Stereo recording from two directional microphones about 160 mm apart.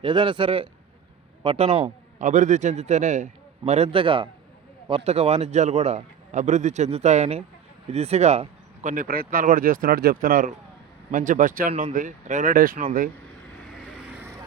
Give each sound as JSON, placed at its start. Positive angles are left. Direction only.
{"t": 0.0, "sound": "a man's voice", "side_deg": -30}